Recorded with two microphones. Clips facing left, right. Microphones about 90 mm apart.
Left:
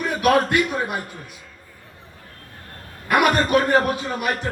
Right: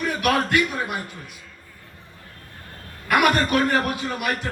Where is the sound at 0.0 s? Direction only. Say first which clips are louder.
Left 4 dB; 25° left (ahead or behind).